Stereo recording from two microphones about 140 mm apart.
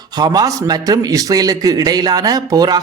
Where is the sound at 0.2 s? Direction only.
30° right (ahead or behind).